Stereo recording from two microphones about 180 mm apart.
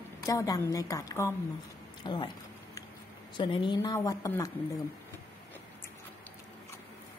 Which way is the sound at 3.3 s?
25° left (ahead or behind).